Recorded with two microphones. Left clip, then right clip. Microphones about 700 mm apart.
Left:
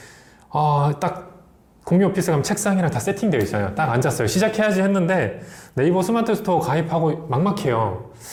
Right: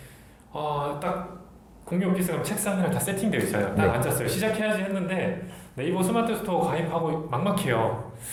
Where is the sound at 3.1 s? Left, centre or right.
Left.